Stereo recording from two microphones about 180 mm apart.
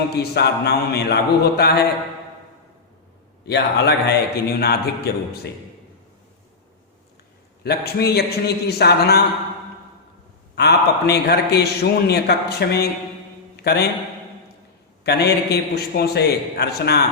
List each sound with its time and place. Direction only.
0.2 s a man's voice: 65° left (ahead or behind)
3.4 s a man's voice: 65° left (ahead or behind)
7.6 s a man's voice: 65° left (ahead or behind)
10.5 s a man's voice: 65° left (ahead or behind)
15.0 s a man's voice: 65° left (ahead or behind)